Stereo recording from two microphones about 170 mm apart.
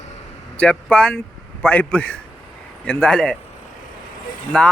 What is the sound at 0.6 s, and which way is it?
Speech, 5° left (ahead or behind).